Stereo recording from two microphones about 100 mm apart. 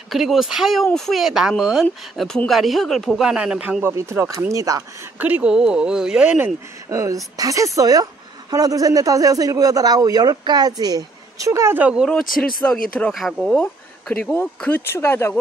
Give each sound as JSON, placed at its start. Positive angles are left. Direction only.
{"t": 0.1, "sound": "speech", "side_deg": 0}
{"t": 3.3, "sound": "speech", "side_deg": -10}
{"t": 3.8, "sound": "speech", "side_deg": -30}
{"t": 5.2, "sound": "speech", "side_deg": -15}
{"t": 6.9, "sound": "a woman's voice", "side_deg": -30}
{"t": 12.1, "sound": "speech", "side_deg": 5}
{"t": 13.1, "sound": "speech", "side_deg": 0}
{"t": 14.1, "sound": "speech", "side_deg": 15}
{"t": 14.9, "sound": "speech", "side_deg": 25}